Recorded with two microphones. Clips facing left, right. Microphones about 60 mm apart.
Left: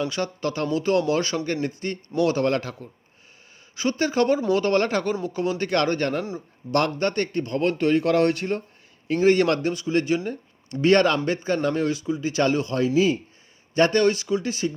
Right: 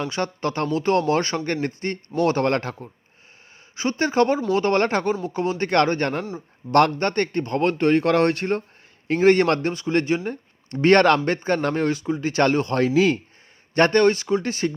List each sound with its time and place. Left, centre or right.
0.0 s a man's voice: right
3.8 s a man's voice: right
12.9 s speech: right
13.7 s a man's voice: right